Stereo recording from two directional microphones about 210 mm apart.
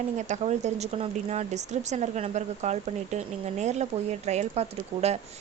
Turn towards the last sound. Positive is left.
turn(degrees=-30)  # may be behind; listen again after turning